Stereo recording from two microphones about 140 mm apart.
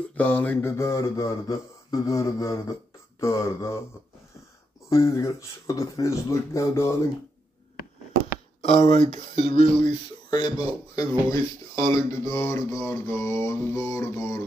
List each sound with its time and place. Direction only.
0.0 s speech: 10° left (ahead or behind)
4.8 s speech: 20° left (ahead or behind)
8.6 s speech: 45° left (ahead or behind)
9.8 s speech: 35° left (ahead or behind)